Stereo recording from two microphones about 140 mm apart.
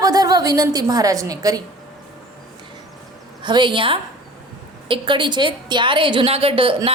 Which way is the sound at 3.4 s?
35° right (ahead or behind).